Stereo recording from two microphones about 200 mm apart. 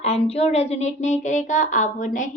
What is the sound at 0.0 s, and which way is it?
A woman's voice, 30° left (ahead or behind).